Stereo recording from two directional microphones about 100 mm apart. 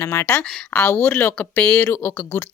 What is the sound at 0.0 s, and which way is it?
Speech, 25° left (ahead or behind).